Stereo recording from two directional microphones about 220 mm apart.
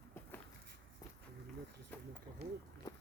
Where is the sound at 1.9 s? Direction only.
10° left (ahead or behind).